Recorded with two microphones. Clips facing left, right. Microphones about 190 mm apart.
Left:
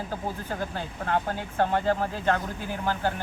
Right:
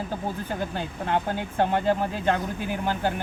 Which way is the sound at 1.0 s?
20° right (ahead or behind).